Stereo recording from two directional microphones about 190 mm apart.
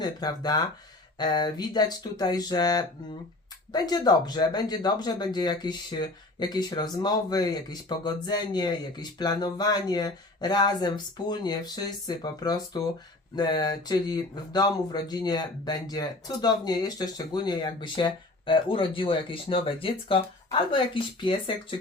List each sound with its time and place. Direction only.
0.0 s speech: 20° left (ahead or behind)